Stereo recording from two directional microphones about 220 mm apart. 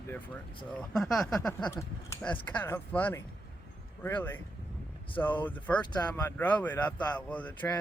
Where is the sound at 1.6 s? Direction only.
15° left (ahead or behind).